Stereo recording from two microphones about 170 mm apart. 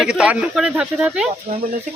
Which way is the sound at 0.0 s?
5° right (ahead or behind).